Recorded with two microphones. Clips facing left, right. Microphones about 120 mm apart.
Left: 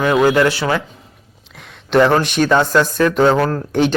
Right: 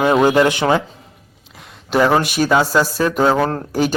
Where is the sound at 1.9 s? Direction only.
5° right (ahead or behind).